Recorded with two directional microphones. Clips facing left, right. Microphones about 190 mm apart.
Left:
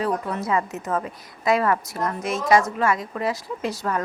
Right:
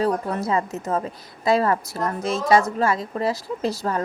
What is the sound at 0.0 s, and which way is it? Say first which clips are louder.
A woman's voice: right 2 dB; 35° right (ahead or behind).